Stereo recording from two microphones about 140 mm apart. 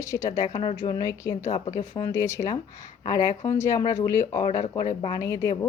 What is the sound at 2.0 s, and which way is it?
A woman's voice, 20° left (ahead or behind).